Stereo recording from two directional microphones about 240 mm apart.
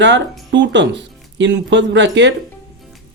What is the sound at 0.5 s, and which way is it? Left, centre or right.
Speech, right.